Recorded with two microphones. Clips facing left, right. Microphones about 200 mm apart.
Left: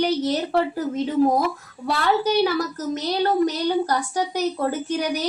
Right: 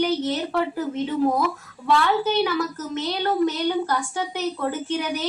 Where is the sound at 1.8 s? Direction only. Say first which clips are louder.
Even; 40° left (ahead or behind).